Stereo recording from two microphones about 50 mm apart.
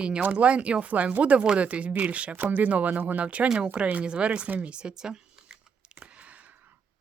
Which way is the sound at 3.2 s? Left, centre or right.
Right.